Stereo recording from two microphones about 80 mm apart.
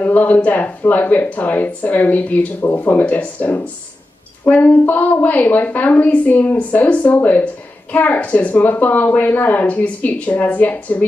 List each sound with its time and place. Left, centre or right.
0.0 s speech: centre